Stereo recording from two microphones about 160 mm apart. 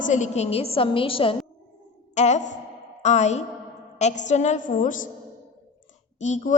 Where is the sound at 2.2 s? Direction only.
45° left (ahead or behind).